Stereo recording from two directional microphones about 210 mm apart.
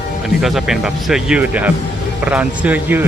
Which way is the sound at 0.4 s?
Centre (ahead or behind).